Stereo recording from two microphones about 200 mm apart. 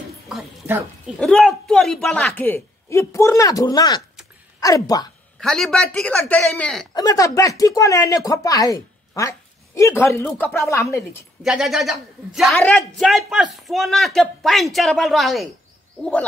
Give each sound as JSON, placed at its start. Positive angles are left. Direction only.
{"t": 0.3, "sound": "a woman's voice", "side_deg": -5}
{"t": 5.4, "sound": "a man's voice", "side_deg": 5}
{"t": 6.9, "sound": "speech", "side_deg": 20}
{"t": 11.4, "sound": "a man's voice", "side_deg": 0}